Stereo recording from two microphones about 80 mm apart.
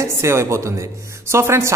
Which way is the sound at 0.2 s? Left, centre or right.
Right.